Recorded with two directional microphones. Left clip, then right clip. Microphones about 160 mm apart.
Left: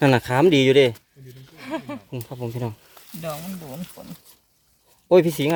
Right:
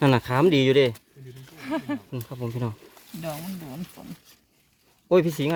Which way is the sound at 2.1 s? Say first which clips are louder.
Left 2 dB; centre (ahead or behind).